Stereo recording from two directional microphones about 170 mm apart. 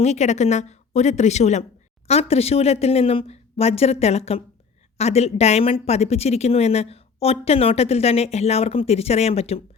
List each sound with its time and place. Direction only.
0.0 s speech: 40° left (ahead or behind)